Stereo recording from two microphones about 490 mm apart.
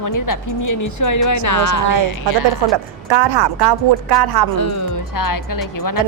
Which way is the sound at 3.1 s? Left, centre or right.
Right.